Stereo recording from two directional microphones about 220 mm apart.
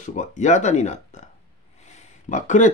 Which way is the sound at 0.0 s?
35° left (ahead or behind).